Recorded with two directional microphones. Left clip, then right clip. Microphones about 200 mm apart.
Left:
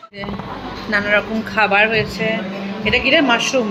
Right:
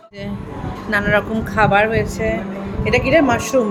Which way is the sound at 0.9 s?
15° right (ahead or behind).